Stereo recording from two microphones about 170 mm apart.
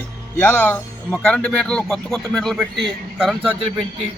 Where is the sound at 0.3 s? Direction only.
10° left (ahead or behind).